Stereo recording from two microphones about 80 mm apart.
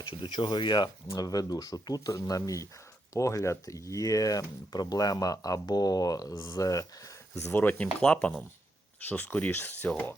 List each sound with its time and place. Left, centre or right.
0.0 s speech: left
1.1 s speech: left
7.5 s speech: left